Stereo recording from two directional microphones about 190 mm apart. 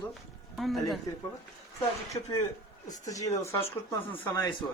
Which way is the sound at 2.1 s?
20° left (ahead or behind).